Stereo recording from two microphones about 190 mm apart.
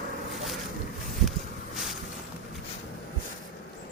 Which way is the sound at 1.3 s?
Centre (ahead or behind).